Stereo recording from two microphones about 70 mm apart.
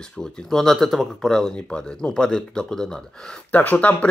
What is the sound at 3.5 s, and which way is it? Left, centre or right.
Speech, left.